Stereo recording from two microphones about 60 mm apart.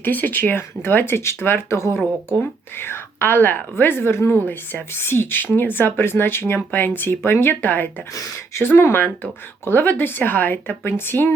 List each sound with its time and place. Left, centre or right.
0.0 s speech: left